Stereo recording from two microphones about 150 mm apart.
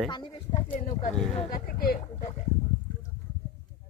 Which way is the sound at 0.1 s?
30° left (ahead or behind).